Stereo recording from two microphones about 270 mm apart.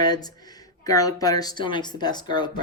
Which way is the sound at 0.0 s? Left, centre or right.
Centre.